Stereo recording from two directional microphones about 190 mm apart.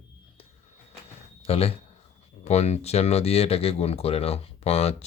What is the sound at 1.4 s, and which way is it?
Speech, 30° left (ahead or behind).